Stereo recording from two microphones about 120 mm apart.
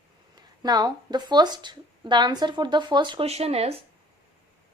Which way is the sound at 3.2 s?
60° right (ahead or behind).